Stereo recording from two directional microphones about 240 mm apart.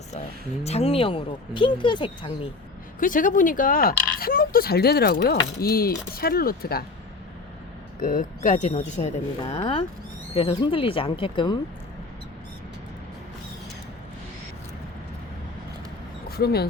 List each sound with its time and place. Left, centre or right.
0.6 s speech: left
3.0 s speech: left
7.9 s speech: left
16.3 s speech: left